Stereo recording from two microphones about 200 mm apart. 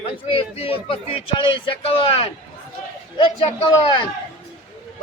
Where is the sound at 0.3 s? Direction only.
30° left (ahead or behind).